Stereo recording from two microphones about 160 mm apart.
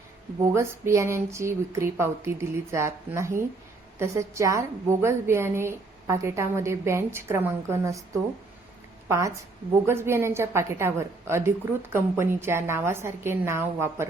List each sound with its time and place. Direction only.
0.5 s a woman's voice: 15° right (ahead or behind)
9.0 s a woman's voice: 20° right (ahead or behind)